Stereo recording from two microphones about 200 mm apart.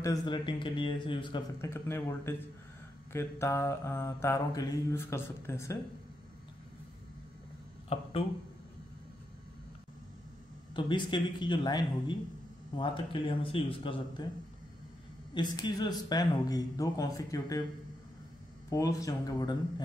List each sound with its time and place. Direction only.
0.0 s speech: 20° left (ahead or behind)
1.7 s mantra: 10° left (ahead or behind)
7.9 s speech: 30° left (ahead or behind)
10.7 s speech: 25° left (ahead or behind)
15.3 s speech: 20° left (ahead or behind)
18.7 s mantra: 15° left (ahead or behind)